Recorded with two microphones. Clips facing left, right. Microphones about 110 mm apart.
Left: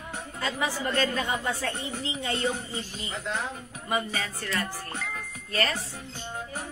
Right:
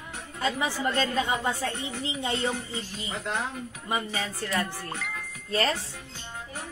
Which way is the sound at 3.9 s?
25° right (ahead or behind).